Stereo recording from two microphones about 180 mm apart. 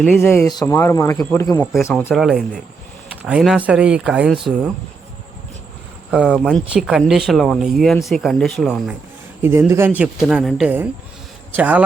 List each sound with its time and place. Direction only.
0.2 s speech: 15° left (ahead or behind)
2.0 s speech: 5° right (ahead or behind)
6.1 s speech: 5° right (ahead or behind)
9.4 s speech: 15° right (ahead or behind)